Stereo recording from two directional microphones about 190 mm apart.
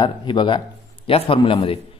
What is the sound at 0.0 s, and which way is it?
Speech, 25° left (ahead or behind).